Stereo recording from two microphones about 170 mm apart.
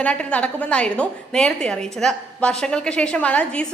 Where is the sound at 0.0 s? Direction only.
5° left (ahead or behind).